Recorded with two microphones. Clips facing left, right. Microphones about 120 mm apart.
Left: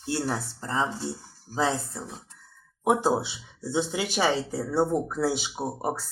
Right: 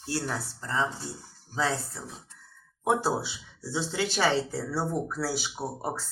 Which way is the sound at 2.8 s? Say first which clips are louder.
Left 3 dB; 15° left (ahead or behind).